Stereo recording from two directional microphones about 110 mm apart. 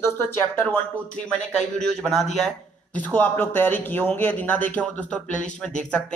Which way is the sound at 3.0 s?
15° left (ahead or behind).